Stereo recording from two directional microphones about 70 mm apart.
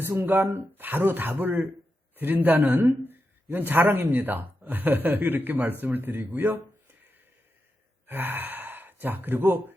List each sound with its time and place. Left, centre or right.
0.2 s speech: right